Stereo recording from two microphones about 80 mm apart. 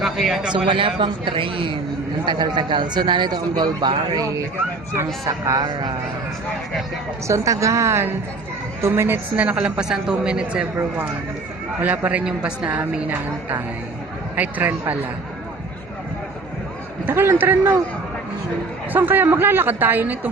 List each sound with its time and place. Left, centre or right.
0.0 s speech: centre
0.5 s speech: right
2.2 s speech: right
5.2 s a woman's voice: right
7.3 s a woman's voice: right; by 10.7 s centre
11.8 s a woman's voice: right
12.8 s a man's voice: right
17.1 s a man's voice: right
18.9 s a man's voice: right